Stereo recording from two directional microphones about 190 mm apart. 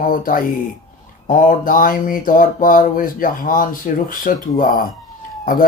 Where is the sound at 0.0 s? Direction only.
45° left (ahead or behind).